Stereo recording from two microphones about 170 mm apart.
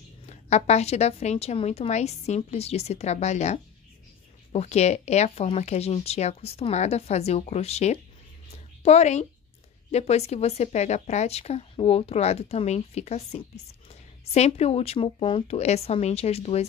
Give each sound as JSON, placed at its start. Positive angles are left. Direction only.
{"t": 0.3, "sound": "speech", "side_deg": 40}